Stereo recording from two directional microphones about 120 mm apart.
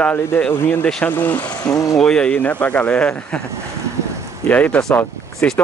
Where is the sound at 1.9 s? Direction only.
5° left (ahead or behind).